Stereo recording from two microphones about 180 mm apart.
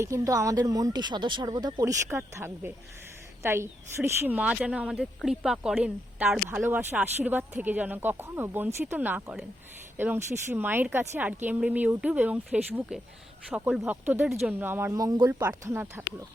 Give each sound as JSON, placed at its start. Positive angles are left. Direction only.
{"t": 0.0, "sound": "speech", "side_deg": -20}